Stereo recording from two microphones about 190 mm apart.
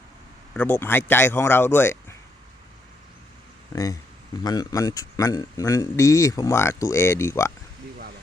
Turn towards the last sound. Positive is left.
turn(degrees=15)  # may be behind; listen again after turning